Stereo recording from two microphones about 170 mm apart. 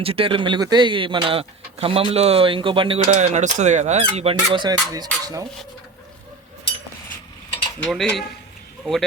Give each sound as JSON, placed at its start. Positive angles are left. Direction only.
{"t": 0.0, "sound": "speech", "side_deg": -35}
{"t": 7.8, "sound": "mechanisms", "side_deg": 5}
{"t": 8.8, "sound": "speech", "side_deg": 0}